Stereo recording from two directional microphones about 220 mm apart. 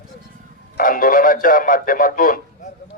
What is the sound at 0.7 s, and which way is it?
Speech, 40° left (ahead or behind).